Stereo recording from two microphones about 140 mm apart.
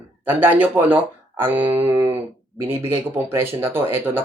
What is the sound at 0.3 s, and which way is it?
Speech, 10° right (ahead or behind).